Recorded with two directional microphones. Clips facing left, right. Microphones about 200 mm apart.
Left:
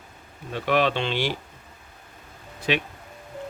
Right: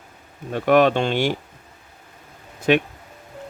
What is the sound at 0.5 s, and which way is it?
Speech, 50° right (ahead or behind).